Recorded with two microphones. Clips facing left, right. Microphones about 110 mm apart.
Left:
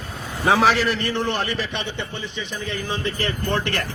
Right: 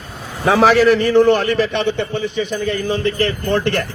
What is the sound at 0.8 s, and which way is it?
A man's voice, 55° right (ahead or behind).